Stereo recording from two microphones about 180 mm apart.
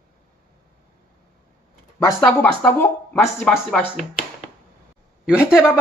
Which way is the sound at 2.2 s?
5° left (ahead or behind).